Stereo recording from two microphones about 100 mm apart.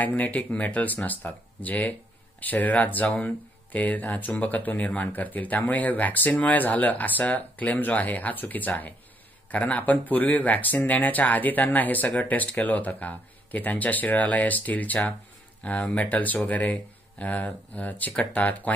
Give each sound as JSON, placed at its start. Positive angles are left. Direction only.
{"t": 0.0, "sound": "speech", "side_deg": 15}